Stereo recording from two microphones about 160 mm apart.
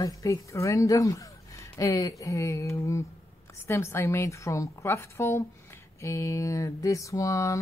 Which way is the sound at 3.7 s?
15° left (ahead or behind).